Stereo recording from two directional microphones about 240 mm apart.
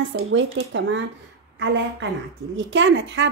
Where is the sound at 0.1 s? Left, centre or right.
Right.